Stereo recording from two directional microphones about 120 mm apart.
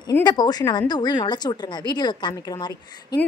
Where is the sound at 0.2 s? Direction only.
35° left (ahead or behind).